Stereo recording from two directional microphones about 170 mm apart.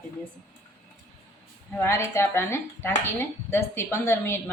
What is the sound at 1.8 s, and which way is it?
Speech, 15° left (ahead or behind).